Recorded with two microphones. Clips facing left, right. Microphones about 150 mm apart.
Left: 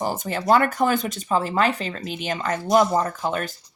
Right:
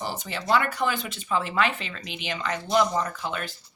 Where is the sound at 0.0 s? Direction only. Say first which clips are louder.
Left 7 dB; 45° left (ahead or behind).